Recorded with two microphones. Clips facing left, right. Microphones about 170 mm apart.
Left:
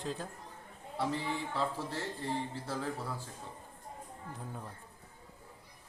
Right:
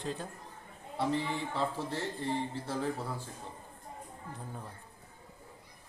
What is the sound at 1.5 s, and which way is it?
Speech, 25° right (ahead or behind).